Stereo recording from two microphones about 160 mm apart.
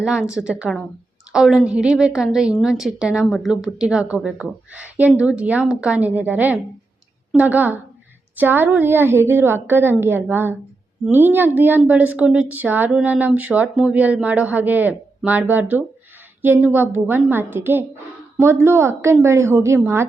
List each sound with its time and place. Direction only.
0.0 s a woman's voice: 5° right (ahead or behind)